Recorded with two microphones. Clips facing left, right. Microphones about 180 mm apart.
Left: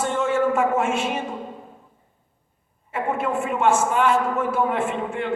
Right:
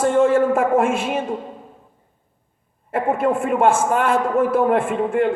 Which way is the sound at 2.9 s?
50° right (ahead or behind).